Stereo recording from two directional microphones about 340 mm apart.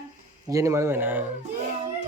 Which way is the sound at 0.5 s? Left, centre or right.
Centre.